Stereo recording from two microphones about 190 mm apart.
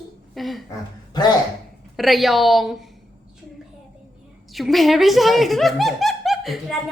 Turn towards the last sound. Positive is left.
turn(degrees=0)  # may be behind; listen again after turning